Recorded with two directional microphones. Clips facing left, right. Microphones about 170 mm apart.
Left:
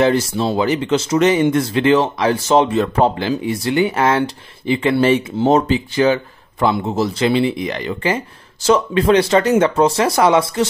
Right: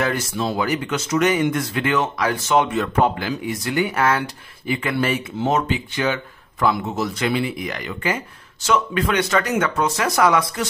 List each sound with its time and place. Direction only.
0.0 s speech: 30° left (ahead or behind)